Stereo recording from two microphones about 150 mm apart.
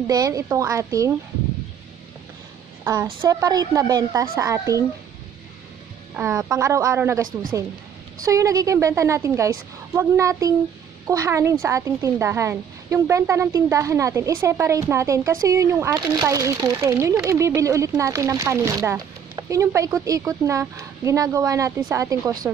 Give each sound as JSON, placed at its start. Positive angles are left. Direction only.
{"t": 0.0, "sound": "speech", "side_deg": -20}
{"t": 2.8, "sound": "speech", "side_deg": -15}
{"t": 6.1, "sound": "speech", "side_deg": -20}
{"t": 8.3, "sound": "speech", "side_deg": -20}